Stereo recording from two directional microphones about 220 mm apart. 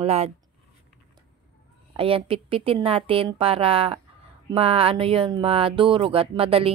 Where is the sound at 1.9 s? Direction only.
25° right (ahead or behind).